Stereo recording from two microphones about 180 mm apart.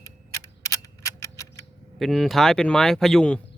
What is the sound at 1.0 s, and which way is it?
Tick-tock, 15° left (ahead or behind).